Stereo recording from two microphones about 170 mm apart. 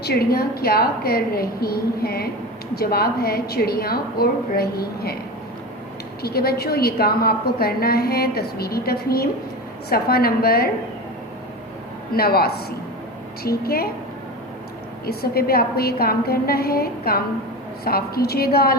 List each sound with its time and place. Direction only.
0.0 s a woman's voice: 65° left (ahead or behind)
6.2 s a woman's voice: 65° left (ahead or behind)
12.1 s a woman's voice: 65° left (ahead or behind)
15.0 s a woman's voice: 65° left (ahead or behind)